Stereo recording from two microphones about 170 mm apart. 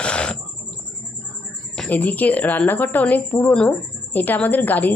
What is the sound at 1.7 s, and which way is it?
Speech, 5° left (ahead or behind).